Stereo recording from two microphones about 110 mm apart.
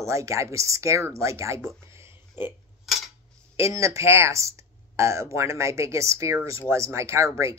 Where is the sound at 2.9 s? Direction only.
Centre (ahead or behind).